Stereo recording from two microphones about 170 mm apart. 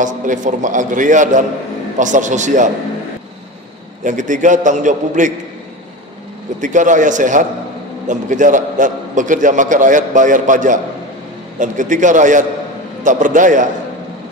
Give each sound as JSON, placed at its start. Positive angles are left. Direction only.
{"t": 0.0, "sound": "a man's voice", "side_deg": -50}
{"t": 4.0, "sound": "a man's voice", "side_deg": -45}
{"t": 6.6, "sound": "a man's voice", "side_deg": -50}